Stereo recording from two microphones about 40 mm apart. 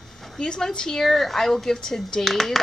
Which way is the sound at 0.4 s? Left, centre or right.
Centre.